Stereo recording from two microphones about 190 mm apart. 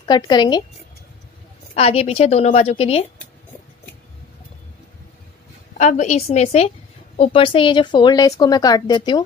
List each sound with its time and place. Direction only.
0.0 s speech: 20° left (ahead or behind)
1.8 s a woman's voice: 30° left (ahead or behind)
5.8 s a woman's voice: 40° left (ahead or behind); by 9.2 s 25° left (ahead or behind)